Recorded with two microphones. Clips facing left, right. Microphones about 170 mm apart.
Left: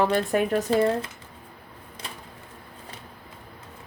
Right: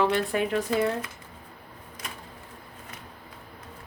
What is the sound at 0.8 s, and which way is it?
Speech, 30° left (ahead or behind).